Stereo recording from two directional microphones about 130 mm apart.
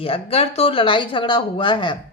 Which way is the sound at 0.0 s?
50° left (ahead or behind).